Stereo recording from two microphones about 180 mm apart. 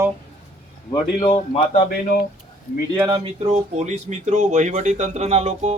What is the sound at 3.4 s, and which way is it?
Speech, 40° right (ahead or behind).